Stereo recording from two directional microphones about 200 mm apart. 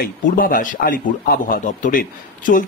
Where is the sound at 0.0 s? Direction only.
45° left (ahead or behind).